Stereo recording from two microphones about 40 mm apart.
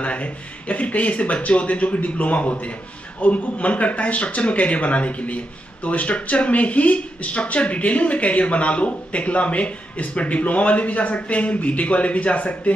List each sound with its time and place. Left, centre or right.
0.0 s speech: left